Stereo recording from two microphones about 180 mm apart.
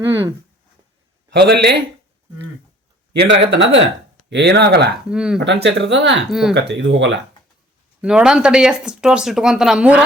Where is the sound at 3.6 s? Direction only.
90° right.